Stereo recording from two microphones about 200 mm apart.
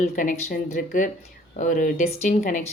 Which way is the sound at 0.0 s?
40° left (ahead or behind).